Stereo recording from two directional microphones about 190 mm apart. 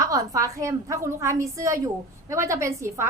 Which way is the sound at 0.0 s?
15° right (ahead or behind).